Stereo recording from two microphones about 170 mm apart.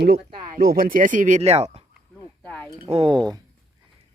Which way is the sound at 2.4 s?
5° left (ahead or behind).